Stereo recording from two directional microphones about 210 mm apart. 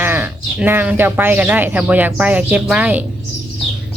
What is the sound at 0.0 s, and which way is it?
Speech, 10° right (ahead or behind).